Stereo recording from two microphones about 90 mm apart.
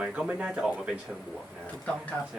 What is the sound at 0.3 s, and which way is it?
Speech, 15° right (ahead or behind).